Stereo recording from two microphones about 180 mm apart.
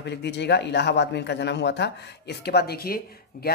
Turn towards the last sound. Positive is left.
turn(degrees=60)  # may be behind; listen again after turning